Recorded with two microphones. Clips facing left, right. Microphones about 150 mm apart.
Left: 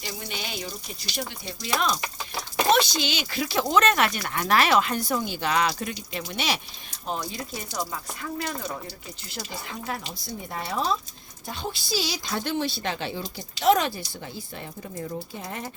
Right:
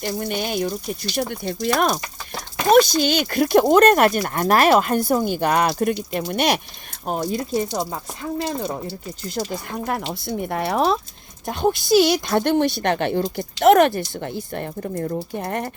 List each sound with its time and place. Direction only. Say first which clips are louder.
0.0 s speech: right 10 dB; 50° right (ahead or behind)
7.5 s speech: right 9 dB; 35° right (ahead or behind)
9.3 s speech: right 9 dB; 50° right (ahead or behind)